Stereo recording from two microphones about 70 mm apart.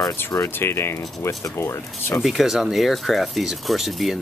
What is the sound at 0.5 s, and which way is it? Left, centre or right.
Speech, left.